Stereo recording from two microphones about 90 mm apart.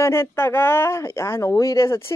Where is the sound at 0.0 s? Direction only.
30° left (ahead or behind).